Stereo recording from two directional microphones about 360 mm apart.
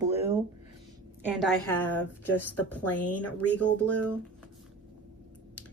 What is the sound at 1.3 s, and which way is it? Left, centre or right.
A woman's voice, centre.